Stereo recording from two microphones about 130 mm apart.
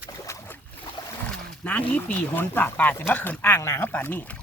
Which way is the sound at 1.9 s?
10° left (ahead or behind).